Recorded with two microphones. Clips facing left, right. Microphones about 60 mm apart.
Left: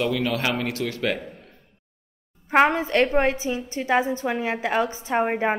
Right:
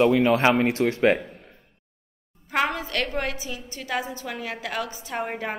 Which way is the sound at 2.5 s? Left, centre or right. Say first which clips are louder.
Left 7 dB; left.